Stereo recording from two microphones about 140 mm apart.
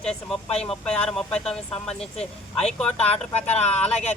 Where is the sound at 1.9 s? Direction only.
50° left (ahead or behind).